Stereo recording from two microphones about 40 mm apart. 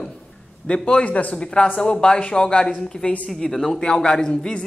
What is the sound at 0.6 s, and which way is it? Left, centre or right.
Speech, left.